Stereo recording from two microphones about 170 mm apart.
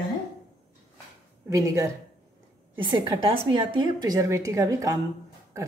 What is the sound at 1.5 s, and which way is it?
A woman's voice, 20° right (ahead or behind).